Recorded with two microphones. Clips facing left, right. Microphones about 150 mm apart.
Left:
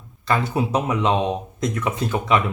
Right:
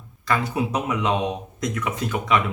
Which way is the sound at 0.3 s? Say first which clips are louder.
Left 2 dB; 30° left (ahead or behind).